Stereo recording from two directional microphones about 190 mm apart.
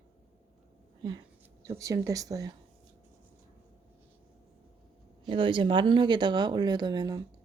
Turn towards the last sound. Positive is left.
turn(degrees=-20)  # may be behind; listen again after turning